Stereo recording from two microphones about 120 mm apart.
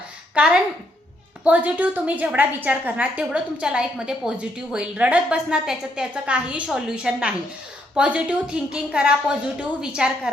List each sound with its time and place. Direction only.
0.4 s a woman's voice: 10° right (ahead or behind)